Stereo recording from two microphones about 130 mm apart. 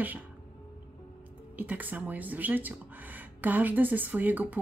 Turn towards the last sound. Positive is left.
turn(degrees=-15)  # may be behind; listen again after turning